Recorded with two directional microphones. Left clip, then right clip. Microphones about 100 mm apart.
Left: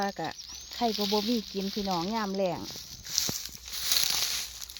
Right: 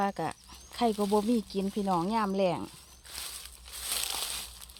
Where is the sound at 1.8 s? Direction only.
5° right (ahead or behind).